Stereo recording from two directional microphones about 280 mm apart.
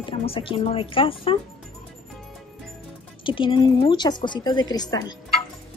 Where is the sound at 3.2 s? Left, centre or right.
Centre.